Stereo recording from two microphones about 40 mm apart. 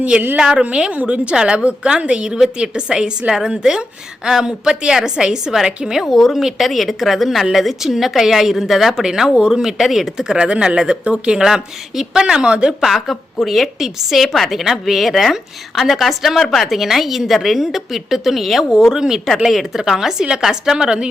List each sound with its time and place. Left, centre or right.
0.3 s a woman's voice: right
6.1 s a woman's voice: centre
9.6 s speech: centre
10.3 s a woman's voice: right
11.4 s speech: centre
12.2 s a woman's voice: right
12.8 s a woman's voice: centre
18.9 s speech: centre
20.7 s a woman's voice: right